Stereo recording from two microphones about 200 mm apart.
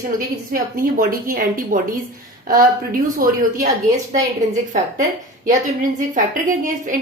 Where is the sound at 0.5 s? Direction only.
45° right (ahead or behind).